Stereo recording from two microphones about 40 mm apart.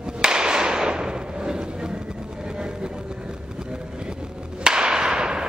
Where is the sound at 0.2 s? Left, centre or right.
Centre.